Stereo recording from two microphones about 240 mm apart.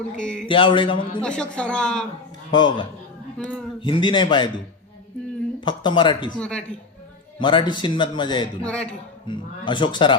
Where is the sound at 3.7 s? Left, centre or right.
Left.